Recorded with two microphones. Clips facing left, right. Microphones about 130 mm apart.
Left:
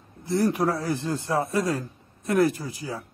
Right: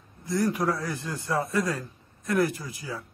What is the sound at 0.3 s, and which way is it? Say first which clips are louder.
A man's voice: left 3 dB; 25° left (ahead or behind).